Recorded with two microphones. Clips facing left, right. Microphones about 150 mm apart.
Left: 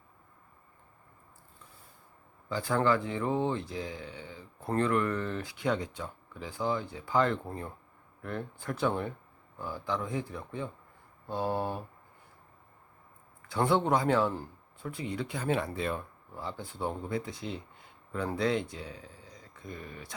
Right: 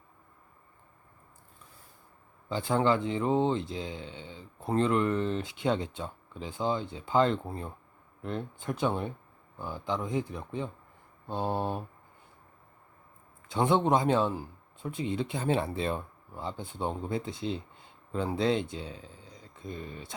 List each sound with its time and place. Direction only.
2.5 s speech: 20° right (ahead or behind)
13.5 s speech: 20° right (ahead or behind)